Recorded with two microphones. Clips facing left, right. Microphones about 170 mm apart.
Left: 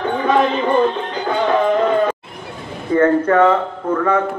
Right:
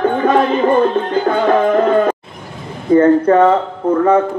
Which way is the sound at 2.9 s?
30° right (ahead or behind).